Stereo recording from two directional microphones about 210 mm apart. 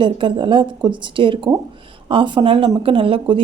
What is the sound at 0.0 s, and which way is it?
A woman's voice, 25° right (ahead or behind).